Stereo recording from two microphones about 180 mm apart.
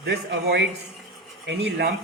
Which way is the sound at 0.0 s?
65° right (ahead or behind).